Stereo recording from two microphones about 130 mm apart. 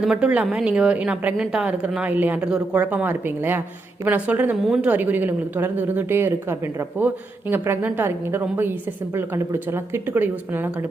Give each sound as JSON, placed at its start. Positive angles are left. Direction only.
{"t": 0.0, "sound": "a woman's voice", "side_deg": -5}